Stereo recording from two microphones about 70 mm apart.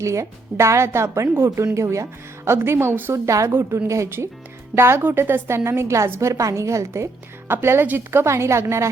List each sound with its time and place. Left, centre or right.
0.0 s a woman's voice: right
3.2 s a woman's voice: right